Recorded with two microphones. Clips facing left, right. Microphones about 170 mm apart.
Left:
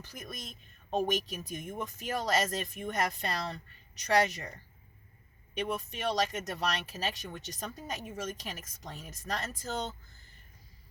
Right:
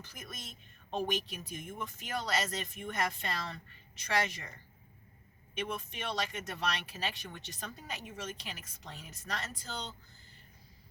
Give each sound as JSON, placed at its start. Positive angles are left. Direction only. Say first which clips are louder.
{"t": 0.9, "sound": "speech", "louder": "left 4 dB", "side_deg": 40}